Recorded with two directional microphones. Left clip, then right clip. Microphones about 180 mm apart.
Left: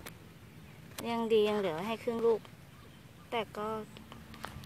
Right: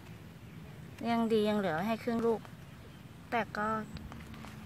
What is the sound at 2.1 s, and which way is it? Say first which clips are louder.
A woman's voice: left 5 dB; centre (ahead or behind).